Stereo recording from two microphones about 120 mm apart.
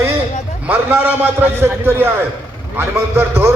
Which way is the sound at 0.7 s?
15° right (ahead or behind).